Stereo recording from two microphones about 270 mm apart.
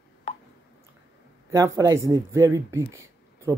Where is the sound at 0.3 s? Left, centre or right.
Left.